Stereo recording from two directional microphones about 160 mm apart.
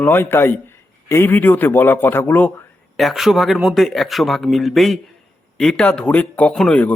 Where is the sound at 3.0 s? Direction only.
Centre (ahead or behind).